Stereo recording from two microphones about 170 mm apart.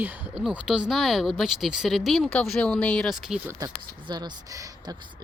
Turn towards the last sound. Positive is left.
turn(degrees=-20)  # may be behind; listen again after turning